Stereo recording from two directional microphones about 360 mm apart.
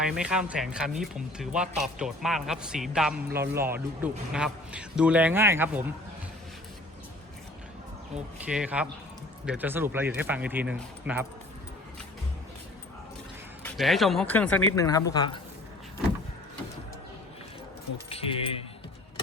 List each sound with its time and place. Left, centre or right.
0.0 s speech: centre
8.4 s speech: centre
13.6 s speech: centre
17.9 s speech: centre